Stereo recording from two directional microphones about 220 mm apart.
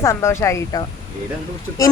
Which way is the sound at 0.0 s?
15° left (ahead or behind).